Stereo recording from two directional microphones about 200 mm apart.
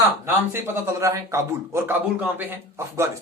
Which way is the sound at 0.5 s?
15° right (ahead or behind).